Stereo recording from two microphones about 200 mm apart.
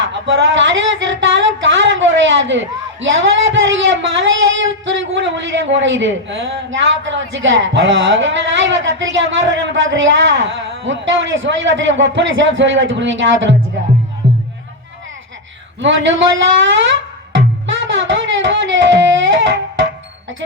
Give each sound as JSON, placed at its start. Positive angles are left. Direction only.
{"t": 0.0, "sound": "a sound", "side_deg": -70}
{"t": 1.2, "sound": "speech", "side_deg": -70}
{"t": 15.8, "sound": "speech", "side_deg": -70}
{"t": 16.9, "sound": "music", "side_deg": -70}